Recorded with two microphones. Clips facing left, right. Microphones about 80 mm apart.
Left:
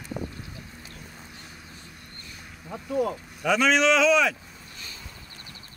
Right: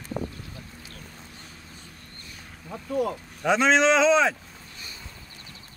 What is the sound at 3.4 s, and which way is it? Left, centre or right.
Speech, right.